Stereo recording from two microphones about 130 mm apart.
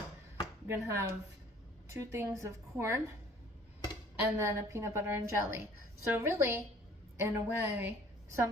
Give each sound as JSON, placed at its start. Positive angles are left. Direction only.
{"t": 0.7, "sound": "a woman's voice", "side_deg": -20}
{"t": 4.2, "sound": "a woman's voice", "side_deg": -20}